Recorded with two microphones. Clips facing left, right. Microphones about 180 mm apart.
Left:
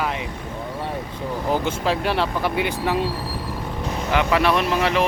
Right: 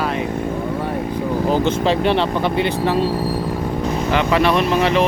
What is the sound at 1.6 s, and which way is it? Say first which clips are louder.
Speech: right 6 dB; 5° left (ahead or behind).